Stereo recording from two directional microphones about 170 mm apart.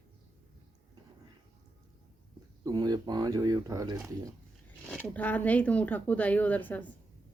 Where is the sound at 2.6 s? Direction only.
25° right (ahead or behind).